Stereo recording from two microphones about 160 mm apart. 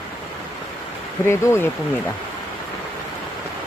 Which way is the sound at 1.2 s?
15° left (ahead or behind).